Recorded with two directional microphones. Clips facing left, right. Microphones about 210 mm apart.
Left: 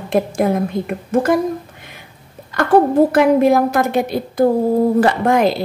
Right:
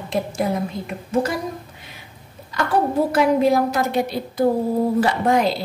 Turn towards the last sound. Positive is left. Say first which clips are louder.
# left 4 dB
turn(degrees=55)  # may be behind; listen again after turning